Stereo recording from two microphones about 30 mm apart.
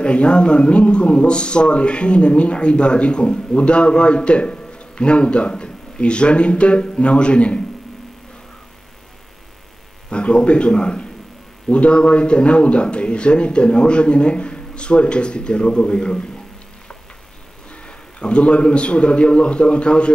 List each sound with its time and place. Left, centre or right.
0.0 s a man's voice: left
10.0 s a man's voice: left
17.6 s a man's voice: left